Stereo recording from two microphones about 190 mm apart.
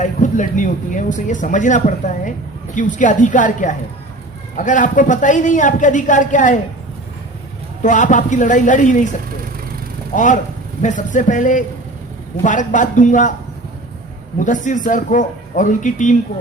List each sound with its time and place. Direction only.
0.0 s speech: 40° left (ahead or behind)
7.8 s speech: 40° left (ahead or behind)
10.2 s speech: 40° left (ahead or behind)
14.3 s speech: 40° left (ahead or behind)